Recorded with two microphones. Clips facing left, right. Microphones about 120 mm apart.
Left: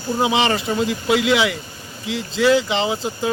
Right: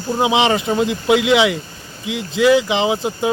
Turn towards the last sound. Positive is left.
turn(degrees=-20)  # may be behind; listen again after turning